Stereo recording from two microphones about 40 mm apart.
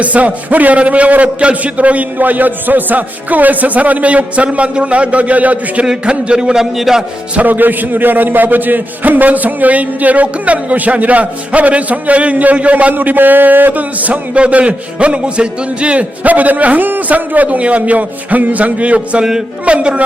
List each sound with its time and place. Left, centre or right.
0.0 s a man's voice: right
6.1 s a man's voice: right
6.7 s a man's voice: centre
7.3 s a man's voice: right
12.9 s a man's voice: right